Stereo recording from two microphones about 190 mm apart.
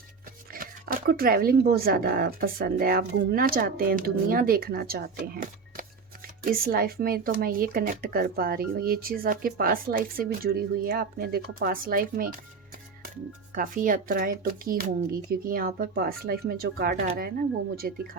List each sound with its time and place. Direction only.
0.5 s speech: 50° right (ahead or behind)
13.5 s speech: 45° right (ahead or behind)